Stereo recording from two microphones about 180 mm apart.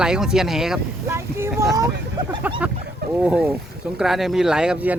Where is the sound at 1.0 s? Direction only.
15° right (ahead or behind).